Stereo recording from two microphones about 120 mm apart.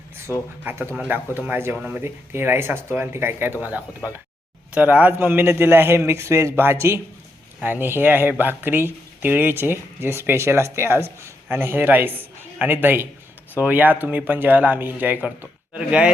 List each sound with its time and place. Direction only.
0.6 s a man's voice: 15° right (ahead or behind)